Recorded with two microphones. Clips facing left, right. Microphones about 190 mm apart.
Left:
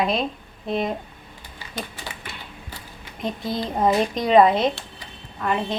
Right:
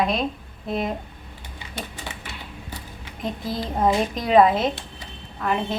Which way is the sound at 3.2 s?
Centre (ahead or behind).